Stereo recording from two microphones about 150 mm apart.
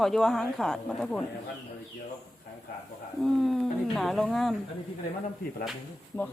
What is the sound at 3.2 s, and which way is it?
A woman's voice, centre (ahead or behind).